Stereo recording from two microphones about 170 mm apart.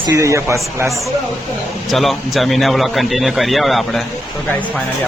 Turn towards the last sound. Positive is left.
turn(degrees=0)  # may be behind; listen again after turning